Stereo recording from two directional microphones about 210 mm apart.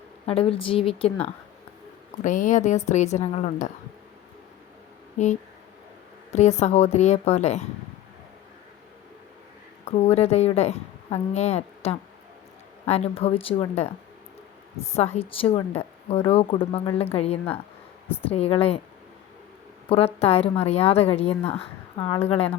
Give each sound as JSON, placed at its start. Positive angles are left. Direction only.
{"t": 0.3, "sound": "a woman's voice", "side_deg": 25}
{"t": 2.2, "sound": "a woman's voice", "side_deg": 35}
{"t": 5.1, "sound": "a woman's voice", "side_deg": 35}
{"t": 9.8, "sound": "a woman's voice", "side_deg": 30}
{"t": 14.9, "sound": "a woman's voice", "side_deg": 30}
{"t": 19.9, "sound": "a woman's voice", "side_deg": 30}
{"t": 22.0, "sound": "a woman's voice", "side_deg": 15}
{"t": 22.3, "sound": "a woman's voice", "side_deg": 30}